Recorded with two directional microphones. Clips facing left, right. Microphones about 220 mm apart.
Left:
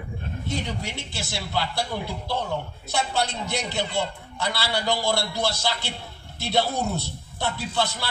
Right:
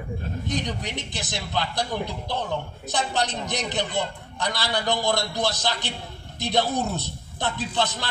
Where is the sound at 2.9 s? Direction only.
20° right (ahead or behind).